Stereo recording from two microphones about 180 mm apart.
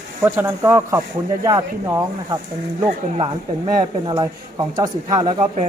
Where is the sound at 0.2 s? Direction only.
15° right (ahead or behind).